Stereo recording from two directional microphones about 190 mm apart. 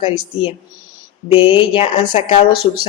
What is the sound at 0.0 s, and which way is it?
A woman's voice, 25° left (ahead or behind).